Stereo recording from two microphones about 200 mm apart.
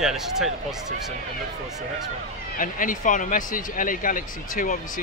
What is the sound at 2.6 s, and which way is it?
Speech, 40° left (ahead or behind).